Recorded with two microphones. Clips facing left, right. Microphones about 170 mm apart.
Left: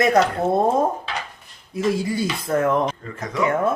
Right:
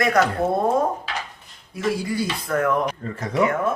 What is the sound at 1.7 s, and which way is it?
Speech, 20° left (ahead or behind).